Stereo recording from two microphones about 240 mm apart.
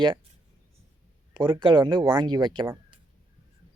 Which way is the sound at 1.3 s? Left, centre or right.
Centre.